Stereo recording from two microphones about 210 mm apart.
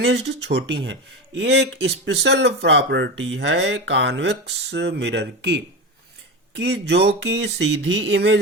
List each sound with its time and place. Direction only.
0.0 s speech: 60° right (ahead or behind)